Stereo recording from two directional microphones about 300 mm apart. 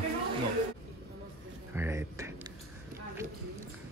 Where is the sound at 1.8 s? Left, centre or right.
Centre.